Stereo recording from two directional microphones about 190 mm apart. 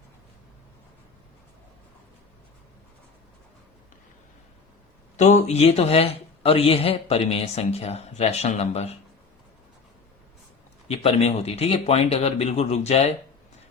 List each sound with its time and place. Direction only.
5.1 s a man's voice: 40° left (ahead or behind)
10.8 s a man's voice: 35° left (ahead or behind)